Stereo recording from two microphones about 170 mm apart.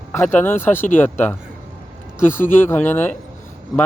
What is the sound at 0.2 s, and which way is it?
Speech, 10° left (ahead or behind).